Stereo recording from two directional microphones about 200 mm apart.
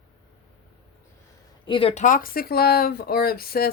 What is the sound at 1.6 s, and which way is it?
Speech, 25° left (ahead or behind).